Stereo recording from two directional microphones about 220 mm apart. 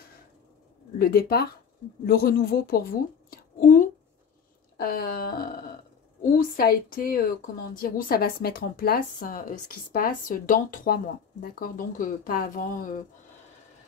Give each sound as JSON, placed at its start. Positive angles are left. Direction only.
{"t": 0.9, "sound": "speech", "side_deg": 45}
{"t": 3.3, "sound": "a sound", "side_deg": 40}
{"t": 4.7, "sound": "a woman's voice", "side_deg": 40}